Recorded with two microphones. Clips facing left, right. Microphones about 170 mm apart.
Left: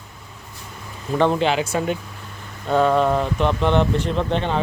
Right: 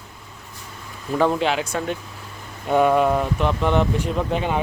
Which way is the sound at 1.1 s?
Centre (ahead or behind).